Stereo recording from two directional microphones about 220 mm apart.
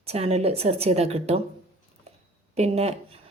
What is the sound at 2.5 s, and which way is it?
Speech, 30° right (ahead or behind).